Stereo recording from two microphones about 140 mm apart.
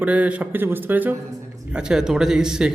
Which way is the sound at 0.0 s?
10° right (ahead or behind).